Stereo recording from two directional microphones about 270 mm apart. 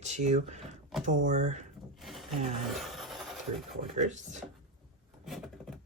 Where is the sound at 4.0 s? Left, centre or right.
Right.